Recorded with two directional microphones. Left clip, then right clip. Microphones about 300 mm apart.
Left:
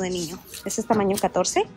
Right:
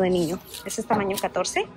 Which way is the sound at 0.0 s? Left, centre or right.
Centre.